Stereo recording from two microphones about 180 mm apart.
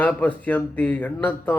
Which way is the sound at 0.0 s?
10° left (ahead or behind).